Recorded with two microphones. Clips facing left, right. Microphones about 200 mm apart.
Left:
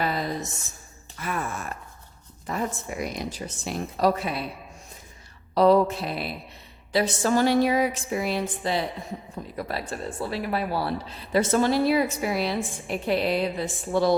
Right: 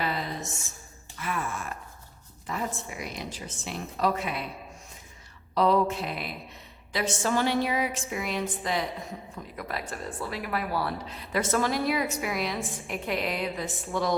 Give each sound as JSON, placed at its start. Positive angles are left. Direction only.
{"t": 0.0, "sound": "a sound", "side_deg": 40}
{"t": 1.2, "sound": "gasp", "side_deg": 45}
{"t": 2.5, "sound": "a woman's voice", "side_deg": 45}
{"t": 5.5, "sound": "a woman's voice", "side_deg": 35}